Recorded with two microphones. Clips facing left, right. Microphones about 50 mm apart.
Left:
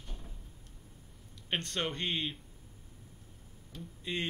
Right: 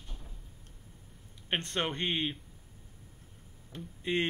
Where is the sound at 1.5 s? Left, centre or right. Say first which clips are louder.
Right 2 dB; right.